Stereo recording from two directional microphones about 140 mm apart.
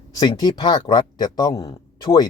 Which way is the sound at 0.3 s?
30° left (ahead or behind).